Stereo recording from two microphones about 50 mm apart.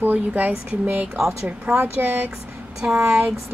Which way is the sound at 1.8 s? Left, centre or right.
Right.